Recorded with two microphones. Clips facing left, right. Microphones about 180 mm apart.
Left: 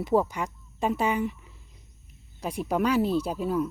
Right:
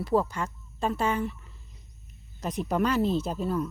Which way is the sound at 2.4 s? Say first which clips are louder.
Left 1 dB; 10° left (ahead or behind).